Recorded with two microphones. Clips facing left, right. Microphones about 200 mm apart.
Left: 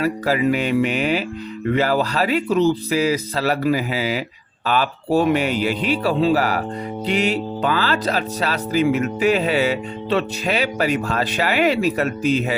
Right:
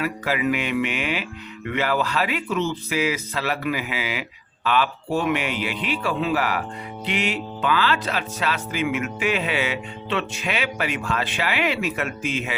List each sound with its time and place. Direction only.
0.0 s speech: 35° left (ahead or behind)